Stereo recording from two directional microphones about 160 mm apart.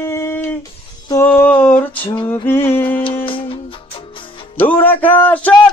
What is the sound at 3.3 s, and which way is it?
Music, 35° left (ahead or behind).